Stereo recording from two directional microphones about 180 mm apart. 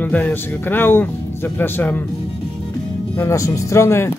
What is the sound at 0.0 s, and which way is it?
Speech, 10° left (ahead or behind).